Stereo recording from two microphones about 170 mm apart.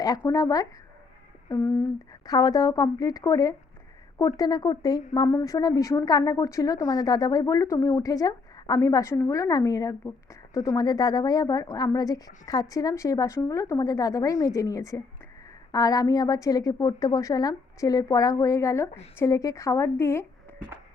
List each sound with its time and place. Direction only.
0.3 s a woman's voice: 20° left (ahead or behind)
2.2 s a woman's voice: 20° left (ahead or behind)